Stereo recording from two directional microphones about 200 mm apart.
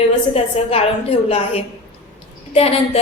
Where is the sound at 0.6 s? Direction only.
30° left (ahead or behind).